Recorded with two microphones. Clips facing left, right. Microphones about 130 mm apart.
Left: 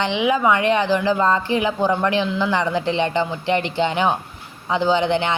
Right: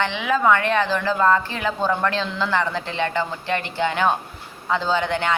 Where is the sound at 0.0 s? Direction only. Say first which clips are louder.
Left 2 dB; 20° left (ahead or behind).